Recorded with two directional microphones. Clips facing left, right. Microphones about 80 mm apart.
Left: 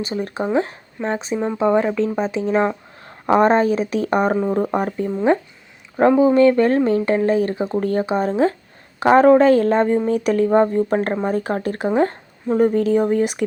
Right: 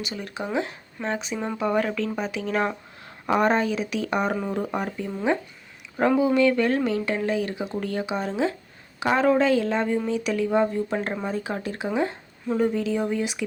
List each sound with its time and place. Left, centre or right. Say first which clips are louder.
0.0 s speech: left 8 dB; left
1.4 s speech: left 7 dB; left
3.1 s speech: left 7 dB; left
4.6 s speech: left 7 dB; left